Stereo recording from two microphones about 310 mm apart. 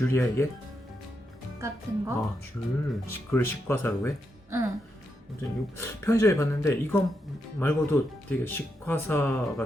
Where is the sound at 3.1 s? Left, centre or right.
Centre.